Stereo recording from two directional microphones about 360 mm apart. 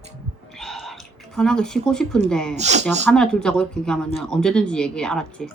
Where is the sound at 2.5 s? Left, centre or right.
Centre.